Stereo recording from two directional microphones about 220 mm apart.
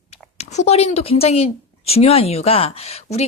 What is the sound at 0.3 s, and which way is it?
Speech, 30° left (ahead or behind).